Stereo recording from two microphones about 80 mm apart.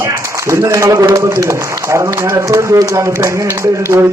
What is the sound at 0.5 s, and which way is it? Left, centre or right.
Speech, right.